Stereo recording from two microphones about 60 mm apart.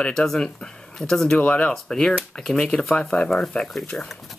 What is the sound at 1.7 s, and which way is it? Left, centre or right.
Speech, centre.